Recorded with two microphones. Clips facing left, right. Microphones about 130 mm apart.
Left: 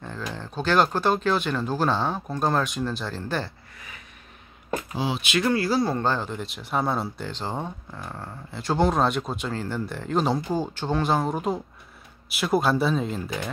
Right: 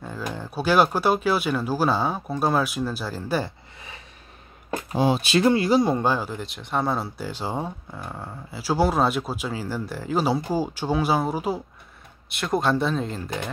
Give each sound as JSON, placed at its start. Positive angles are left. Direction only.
{"t": 0.3, "sound": "speech", "side_deg": -10}
{"t": 4.9, "sound": "speech", "side_deg": -50}
{"t": 5.2, "sound": "speech", "side_deg": -30}